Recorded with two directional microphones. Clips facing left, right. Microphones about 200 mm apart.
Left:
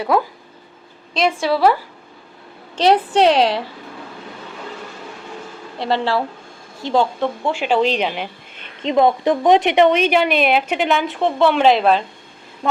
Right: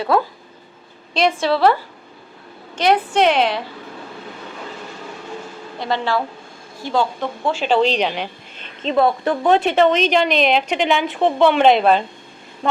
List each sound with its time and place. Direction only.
1.4 s a woman's voice: 10° left (ahead or behind)
2.7 s a woman's voice: 35° left (ahead or behind)
5.8 s a woman's voice: 30° left (ahead or behind)
6.8 s a woman's voice: 20° left (ahead or behind)
8.8 s a woman's voice: 15° left (ahead or behind); by 12.0 s centre (ahead or behind)